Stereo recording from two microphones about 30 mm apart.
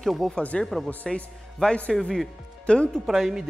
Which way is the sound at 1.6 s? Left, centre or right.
Left.